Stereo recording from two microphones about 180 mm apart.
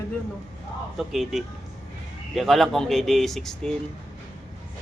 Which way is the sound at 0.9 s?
Centre (ahead or behind).